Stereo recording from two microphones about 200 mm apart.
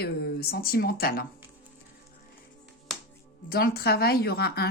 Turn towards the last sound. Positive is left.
turn(degrees=55)  # may be behind; listen again after turning